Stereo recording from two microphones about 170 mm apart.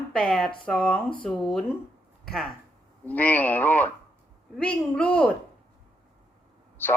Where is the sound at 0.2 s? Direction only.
5° left (ahead or behind).